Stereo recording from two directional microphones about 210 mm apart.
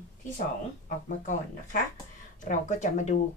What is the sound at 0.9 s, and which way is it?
Speech, 40° left (ahead or behind).